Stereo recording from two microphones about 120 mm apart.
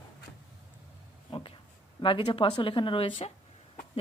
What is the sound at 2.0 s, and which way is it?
A woman's voice, 45° left (ahead or behind).